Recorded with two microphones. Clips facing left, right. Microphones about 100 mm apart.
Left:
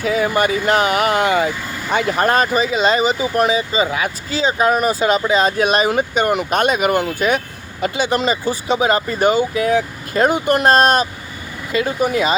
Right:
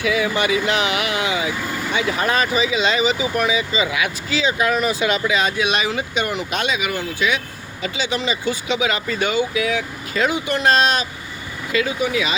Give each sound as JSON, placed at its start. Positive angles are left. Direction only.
{"t": 0.0, "sound": "speech", "side_deg": 40}